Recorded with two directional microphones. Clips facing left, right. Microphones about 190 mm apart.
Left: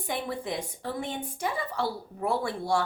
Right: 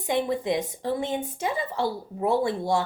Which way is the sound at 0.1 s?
20° right (ahead or behind).